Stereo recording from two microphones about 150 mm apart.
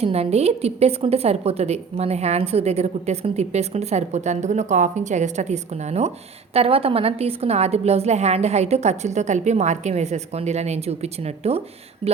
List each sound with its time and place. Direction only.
0.0 s a woman's voice: 45° right (ahead or behind)